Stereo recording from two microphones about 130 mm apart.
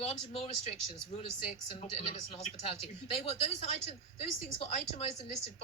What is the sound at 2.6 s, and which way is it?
Speech, 50° left (ahead or behind).